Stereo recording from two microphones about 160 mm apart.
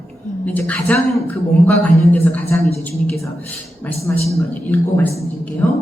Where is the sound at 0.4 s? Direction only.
10° left (ahead or behind).